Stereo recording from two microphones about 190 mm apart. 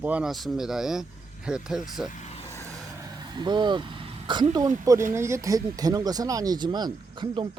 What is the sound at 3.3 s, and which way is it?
Speech, 25° right (ahead or behind).